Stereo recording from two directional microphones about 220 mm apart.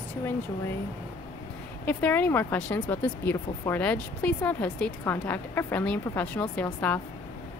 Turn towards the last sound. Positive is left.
turn(degrees=5)  # may be behind; listen again after turning